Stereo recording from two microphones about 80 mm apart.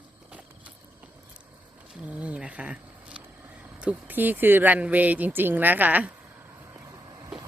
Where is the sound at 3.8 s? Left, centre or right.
Centre.